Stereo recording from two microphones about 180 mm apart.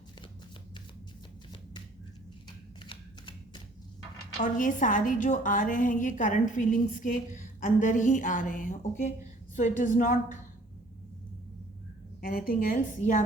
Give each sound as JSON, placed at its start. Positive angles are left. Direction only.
{"t": 2.8, "sound": "shuffling cards", "side_deg": 25}
{"t": 4.4, "sound": "a woman's voice", "side_deg": 45}
{"t": 12.2, "sound": "a woman's voice", "side_deg": 55}